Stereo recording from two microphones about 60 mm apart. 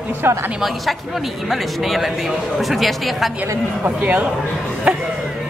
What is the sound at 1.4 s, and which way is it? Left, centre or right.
A man's voice, centre.